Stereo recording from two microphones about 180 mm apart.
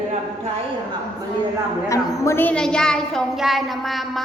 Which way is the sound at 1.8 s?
15° left (ahead or behind).